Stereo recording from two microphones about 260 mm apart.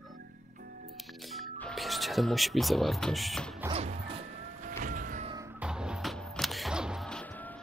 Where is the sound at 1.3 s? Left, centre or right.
Centre.